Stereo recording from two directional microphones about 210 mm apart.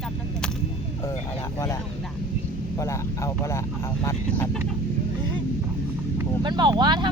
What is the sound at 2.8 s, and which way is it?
Speech, 15° left (ahead or behind).